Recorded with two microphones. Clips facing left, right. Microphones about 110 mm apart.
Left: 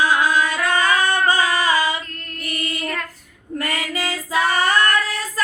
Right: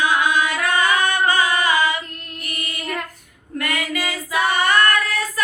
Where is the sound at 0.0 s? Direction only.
30° left (ahead or behind).